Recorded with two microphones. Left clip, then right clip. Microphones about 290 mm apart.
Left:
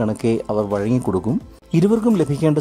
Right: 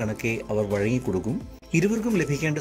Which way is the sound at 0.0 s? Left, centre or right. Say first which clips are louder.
Left 8 dB; centre.